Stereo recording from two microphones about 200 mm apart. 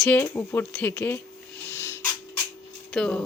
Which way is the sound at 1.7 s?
15° left (ahead or behind).